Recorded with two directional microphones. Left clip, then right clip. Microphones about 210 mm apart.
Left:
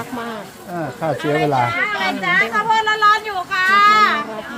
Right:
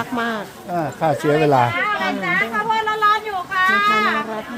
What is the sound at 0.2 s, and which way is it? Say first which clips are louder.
Speech: right 4 dB; 30° right (ahead or behind).